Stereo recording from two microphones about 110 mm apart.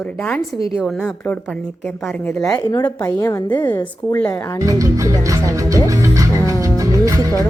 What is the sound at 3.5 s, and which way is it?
A woman's voice, 20° left (ahead or behind).